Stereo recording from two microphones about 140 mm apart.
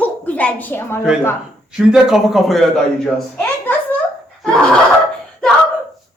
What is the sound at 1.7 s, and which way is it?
Speech, 5° right (ahead or behind).